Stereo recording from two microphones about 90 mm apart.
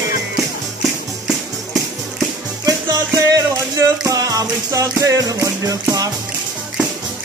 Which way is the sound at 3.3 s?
40° right (ahead or behind).